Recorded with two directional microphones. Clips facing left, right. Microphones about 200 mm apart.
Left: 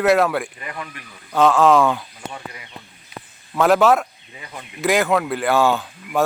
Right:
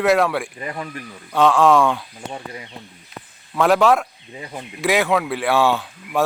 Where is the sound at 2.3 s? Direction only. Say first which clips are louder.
Right 3 dB; 30° right (ahead or behind).